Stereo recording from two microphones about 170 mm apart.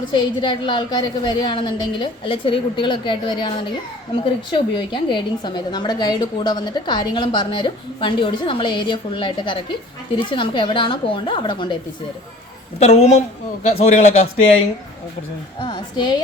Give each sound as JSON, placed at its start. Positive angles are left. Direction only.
{"t": 0.4, "sound": "a woman's voice", "side_deg": 30}
{"t": 12.8, "sound": "a man's voice", "side_deg": 40}
{"t": 15.6, "sound": "a woman's voice", "side_deg": 25}